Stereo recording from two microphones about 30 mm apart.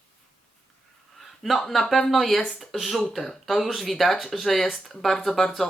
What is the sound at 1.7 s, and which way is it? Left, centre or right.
Speech, centre.